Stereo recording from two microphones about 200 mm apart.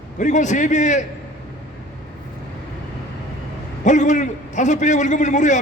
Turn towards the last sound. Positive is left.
turn(degrees=35)  # may be behind; listen again after turning